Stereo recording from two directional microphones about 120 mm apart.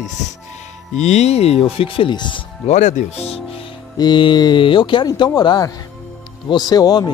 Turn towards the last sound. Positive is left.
turn(degrees=35)  # may be behind; listen again after turning